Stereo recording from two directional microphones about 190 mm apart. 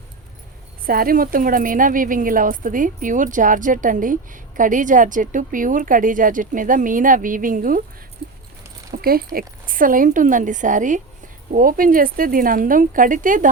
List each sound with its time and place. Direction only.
0.9 s speech: 50° right (ahead or behind)
8.9 s a woman's voice: 50° right (ahead or behind)